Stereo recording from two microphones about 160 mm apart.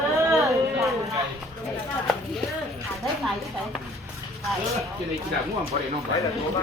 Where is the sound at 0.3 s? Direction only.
20° right (ahead or behind).